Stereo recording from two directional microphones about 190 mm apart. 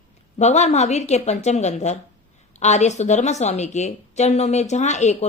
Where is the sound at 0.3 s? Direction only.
35° left (ahead or behind).